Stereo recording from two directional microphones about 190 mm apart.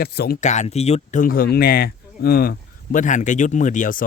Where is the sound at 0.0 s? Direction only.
55° left (ahead or behind).